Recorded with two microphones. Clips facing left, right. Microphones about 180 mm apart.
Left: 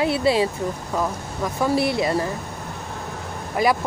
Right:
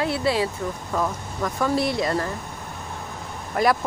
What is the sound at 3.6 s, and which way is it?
Speech, 5° left (ahead or behind).